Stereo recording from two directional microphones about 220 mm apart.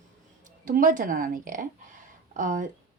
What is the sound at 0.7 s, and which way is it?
Speech, 35° right (ahead or behind).